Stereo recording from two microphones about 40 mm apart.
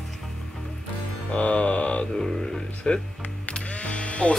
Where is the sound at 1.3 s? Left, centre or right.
Left.